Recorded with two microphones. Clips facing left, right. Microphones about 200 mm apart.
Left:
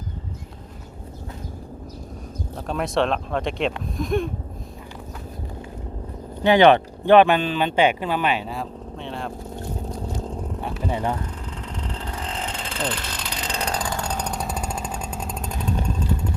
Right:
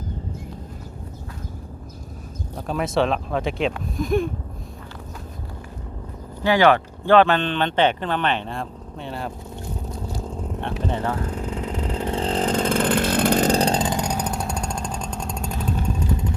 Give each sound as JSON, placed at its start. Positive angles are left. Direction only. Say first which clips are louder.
{"t": 2.6, "sound": "speech", "louder": "right 1 dB", "side_deg": 0}
{"t": 6.4, "sound": "speech", "louder": "left 2 dB", "side_deg": 20}
{"t": 10.6, "sound": "speech", "louder": "right 4 dB", "side_deg": 5}
{"t": 10.8, "sound": "speech", "louder": "left 1 dB", "side_deg": 15}
{"t": 11.4, "sound": "vehicle", "louder": "right 6 dB", "side_deg": -10}
{"t": 12.0, "sound": "chainsaw", "louder": "right 11 dB", "side_deg": -30}